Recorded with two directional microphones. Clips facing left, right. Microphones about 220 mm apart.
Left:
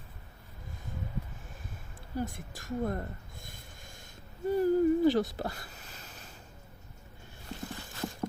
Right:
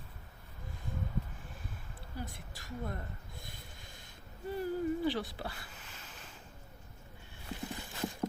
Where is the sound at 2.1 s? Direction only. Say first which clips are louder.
Left 9 dB; 45° left (ahead or behind).